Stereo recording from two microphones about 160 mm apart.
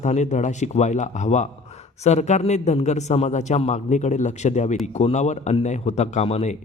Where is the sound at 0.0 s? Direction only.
50° left (ahead or behind).